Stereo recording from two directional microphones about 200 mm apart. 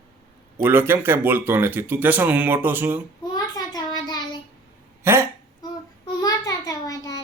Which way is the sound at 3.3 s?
20° left (ahead or behind).